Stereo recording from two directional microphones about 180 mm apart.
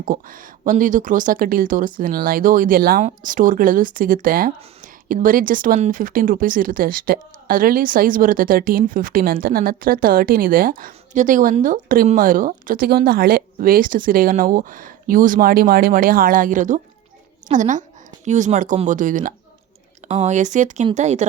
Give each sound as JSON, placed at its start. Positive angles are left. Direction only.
{"t": 0.0, "sound": "speech", "side_deg": -50}